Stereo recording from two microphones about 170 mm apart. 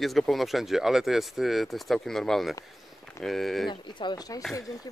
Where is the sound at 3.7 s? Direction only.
25° left (ahead or behind).